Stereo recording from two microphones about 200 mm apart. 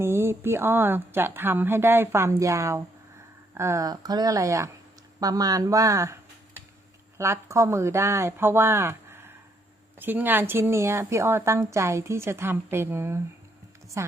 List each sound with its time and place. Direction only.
0.0 s speech: 10° right (ahead or behind)
7.2 s a woman's voice: 15° right (ahead or behind)